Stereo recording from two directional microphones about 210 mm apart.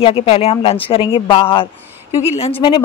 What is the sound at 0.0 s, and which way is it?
Speech, 25° left (ahead or behind).